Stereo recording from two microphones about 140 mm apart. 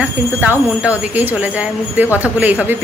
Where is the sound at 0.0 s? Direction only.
10° right (ahead or behind).